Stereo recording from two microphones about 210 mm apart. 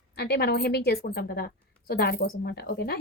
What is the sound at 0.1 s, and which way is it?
A woman's voice, 50° left (ahead or behind).